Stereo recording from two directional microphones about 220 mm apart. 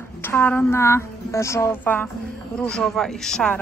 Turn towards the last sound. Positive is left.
turn(degrees=5)  # may be behind; listen again after turning